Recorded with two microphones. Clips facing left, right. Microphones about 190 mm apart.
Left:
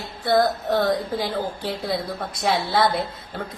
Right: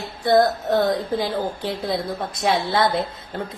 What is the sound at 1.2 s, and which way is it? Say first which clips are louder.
A woman's voice: right 2 dB; 25° right (ahead or behind).